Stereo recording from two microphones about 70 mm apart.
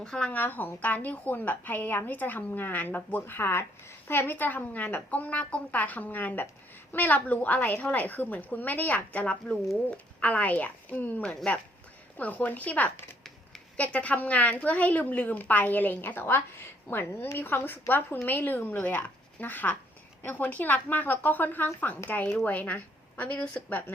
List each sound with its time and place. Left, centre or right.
0.0 s a woman's voice: centre
0.3 s a woman's voice: left